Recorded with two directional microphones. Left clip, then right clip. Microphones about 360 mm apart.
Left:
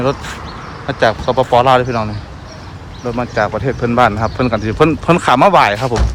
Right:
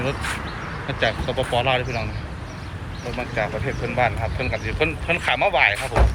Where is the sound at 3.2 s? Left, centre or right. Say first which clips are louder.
Left 9 dB; left.